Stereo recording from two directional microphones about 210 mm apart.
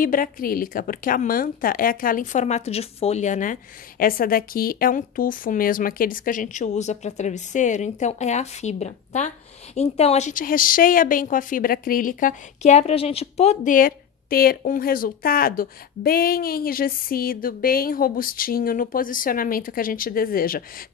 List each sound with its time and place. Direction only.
0.0 s a woman's voice: 40° left (ahead or behind)